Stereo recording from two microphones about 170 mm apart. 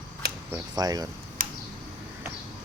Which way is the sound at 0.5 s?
20° right (ahead or behind).